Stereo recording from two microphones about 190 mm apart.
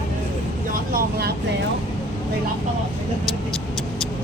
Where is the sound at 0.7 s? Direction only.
55° right (ahead or behind).